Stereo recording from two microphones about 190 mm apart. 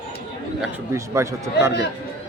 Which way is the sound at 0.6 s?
15° right (ahead or behind).